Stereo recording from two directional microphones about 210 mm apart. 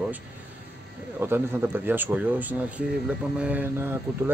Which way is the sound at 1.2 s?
10° right (ahead or behind).